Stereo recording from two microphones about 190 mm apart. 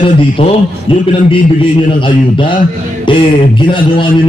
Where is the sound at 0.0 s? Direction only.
30° left (ahead or behind).